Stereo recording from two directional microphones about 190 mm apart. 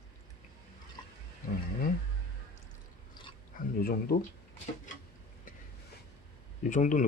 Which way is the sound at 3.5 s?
50° left (ahead or behind).